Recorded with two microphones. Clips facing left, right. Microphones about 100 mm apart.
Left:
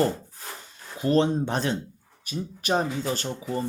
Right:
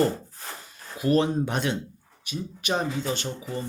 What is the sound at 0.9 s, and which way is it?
Speech, 30° left (ahead or behind).